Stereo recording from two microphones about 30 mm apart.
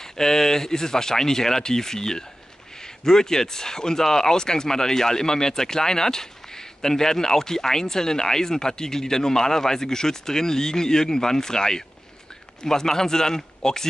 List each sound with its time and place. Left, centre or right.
0.2 s speech: centre